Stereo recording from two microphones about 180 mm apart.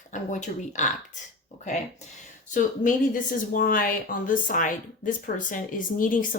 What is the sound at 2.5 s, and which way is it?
Speech, 45° left (ahead or behind).